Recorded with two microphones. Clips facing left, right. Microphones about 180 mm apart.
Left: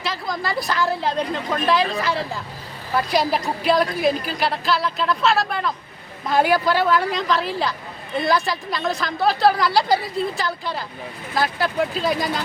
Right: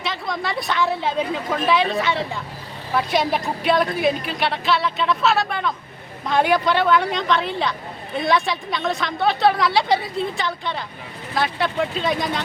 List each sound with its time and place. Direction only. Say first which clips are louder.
0.0 s speech: even; centre (ahead or behind)